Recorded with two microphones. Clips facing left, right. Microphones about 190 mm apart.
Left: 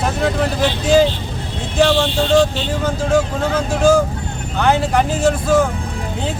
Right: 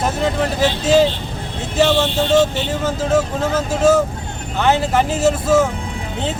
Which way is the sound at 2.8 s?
5° right (ahead or behind).